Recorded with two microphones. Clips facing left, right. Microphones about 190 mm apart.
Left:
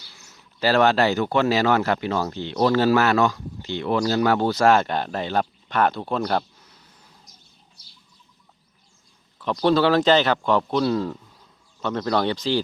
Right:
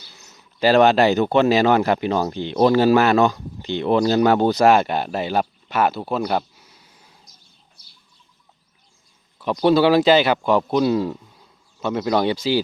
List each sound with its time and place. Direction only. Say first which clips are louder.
0.2 s speech: right 5 dB; 20° right (ahead or behind)
9.4 s speech: right 3 dB; 10° right (ahead or behind)